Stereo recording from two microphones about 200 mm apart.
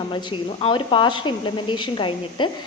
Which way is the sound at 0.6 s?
25° left (ahead or behind).